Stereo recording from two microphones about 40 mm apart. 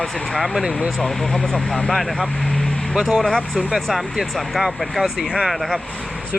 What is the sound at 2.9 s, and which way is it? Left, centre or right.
Speech, centre.